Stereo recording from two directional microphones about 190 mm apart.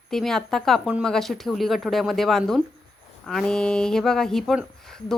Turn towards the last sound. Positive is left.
turn(degrees=0)  # may be behind; listen again after turning